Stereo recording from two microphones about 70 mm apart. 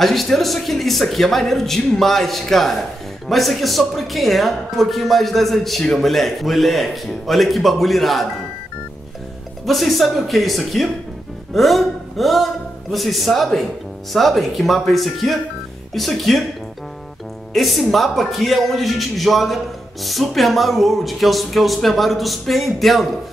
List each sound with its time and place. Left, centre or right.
0.0 s speech: centre
9.7 s speech: centre
17.6 s speech: centre